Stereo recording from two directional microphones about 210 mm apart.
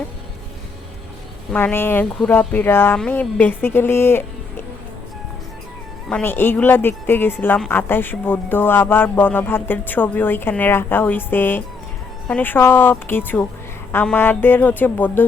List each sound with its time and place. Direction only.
1.5 s speech: 10° left (ahead or behind)
6.1 s speech: 10° left (ahead or behind)